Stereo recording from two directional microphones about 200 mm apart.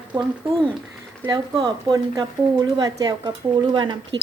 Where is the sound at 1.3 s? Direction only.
20° right (ahead or behind).